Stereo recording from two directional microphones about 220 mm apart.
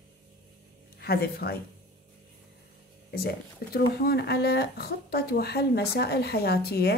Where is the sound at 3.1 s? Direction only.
45° left (ahead or behind).